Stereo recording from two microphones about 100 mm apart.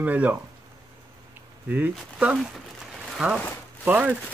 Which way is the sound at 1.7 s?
15° right (ahead or behind).